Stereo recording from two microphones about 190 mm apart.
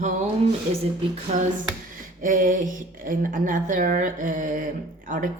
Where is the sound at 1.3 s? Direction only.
40° right (ahead or behind).